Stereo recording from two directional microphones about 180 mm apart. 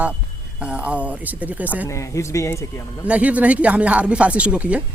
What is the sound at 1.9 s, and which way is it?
Speech, 15° left (ahead or behind).